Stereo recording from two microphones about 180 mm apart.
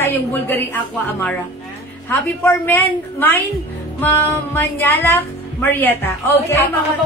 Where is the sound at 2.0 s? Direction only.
10° left (ahead or behind).